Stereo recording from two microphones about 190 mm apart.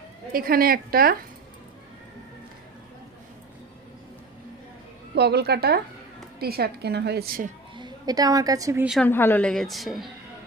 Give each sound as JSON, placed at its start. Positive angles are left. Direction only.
{"t": 0.3, "sound": "a woman's voice", "side_deg": -50}
{"t": 5.1, "sound": "a woman's voice", "side_deg": -60}
{"t": 7.8, "sound": "a woman's voice", "side_deg": -20}
{"t": 8.9, "sound": "a woman's voice", "side_deg": 5}